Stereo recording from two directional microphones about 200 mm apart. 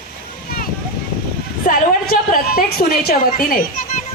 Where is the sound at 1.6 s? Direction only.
45° left (ahead or behind).